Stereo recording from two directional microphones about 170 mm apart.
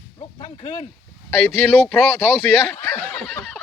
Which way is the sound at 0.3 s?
25° left (ahead or behind).